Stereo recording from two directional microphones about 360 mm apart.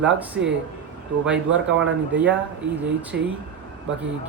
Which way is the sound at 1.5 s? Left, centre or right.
Centre.